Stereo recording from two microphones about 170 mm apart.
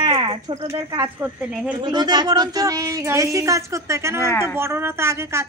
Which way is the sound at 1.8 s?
25° right (ahead or behind).